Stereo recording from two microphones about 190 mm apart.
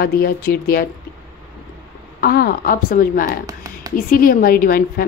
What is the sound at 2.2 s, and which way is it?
A woman's voice, 55° left (ahead or behind).